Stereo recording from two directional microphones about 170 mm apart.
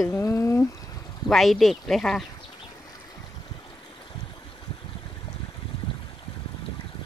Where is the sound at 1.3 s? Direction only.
Centre (ahead or behind).